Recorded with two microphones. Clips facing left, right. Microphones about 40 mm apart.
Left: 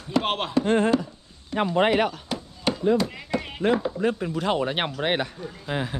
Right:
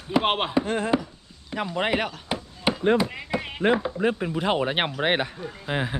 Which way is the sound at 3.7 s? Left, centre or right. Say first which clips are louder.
Even; centre.